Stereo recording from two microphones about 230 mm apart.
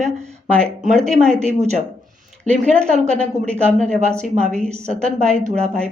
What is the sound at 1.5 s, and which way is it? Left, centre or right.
A woman's voice, right.